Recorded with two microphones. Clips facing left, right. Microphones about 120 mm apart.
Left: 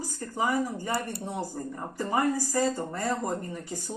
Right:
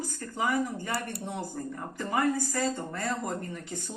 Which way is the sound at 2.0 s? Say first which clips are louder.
Left 2 dB; 35° left (ahead or behind).